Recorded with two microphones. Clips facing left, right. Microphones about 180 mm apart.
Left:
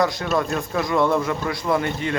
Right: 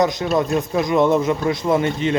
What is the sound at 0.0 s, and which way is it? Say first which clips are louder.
Speech: right 3 dB; 20° right (ahead or behind).